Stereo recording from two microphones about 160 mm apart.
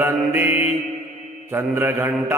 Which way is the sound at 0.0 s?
15° right (ahead or behind).